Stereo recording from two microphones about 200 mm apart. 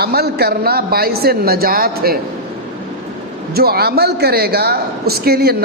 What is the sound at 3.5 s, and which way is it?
A woman's voice, 50° right (ahead or behind).